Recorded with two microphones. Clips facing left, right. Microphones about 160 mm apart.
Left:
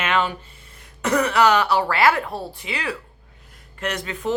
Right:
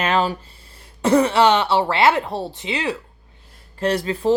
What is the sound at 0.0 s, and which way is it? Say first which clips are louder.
Speech: right 3 dB; 35° right (ahead or behind).